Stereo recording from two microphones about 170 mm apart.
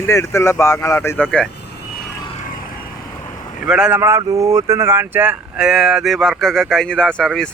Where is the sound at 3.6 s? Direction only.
5° right (ahead or behind).